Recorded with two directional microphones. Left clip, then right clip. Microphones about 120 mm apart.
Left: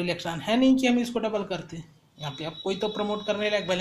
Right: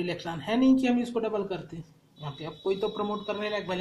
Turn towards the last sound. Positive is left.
turn(degrees=25)  # may be behind; listen again after turning